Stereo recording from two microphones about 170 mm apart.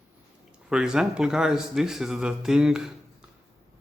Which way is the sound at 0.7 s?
5° right (ahead or behind).